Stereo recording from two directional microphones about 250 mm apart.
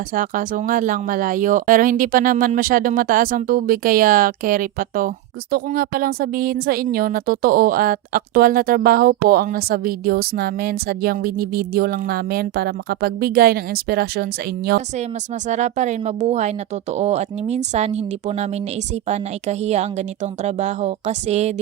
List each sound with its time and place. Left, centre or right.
0.1 s speech: right
15.4 s a woman's voice: right